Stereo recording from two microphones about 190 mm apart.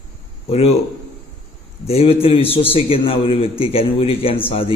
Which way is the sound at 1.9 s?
30° left (ahead or behind).